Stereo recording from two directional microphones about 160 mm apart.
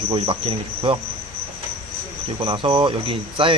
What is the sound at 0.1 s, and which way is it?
Speech, 30° right (ahead or behind).